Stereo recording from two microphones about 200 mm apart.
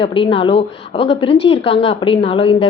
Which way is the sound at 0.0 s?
25° left (ahead or behind).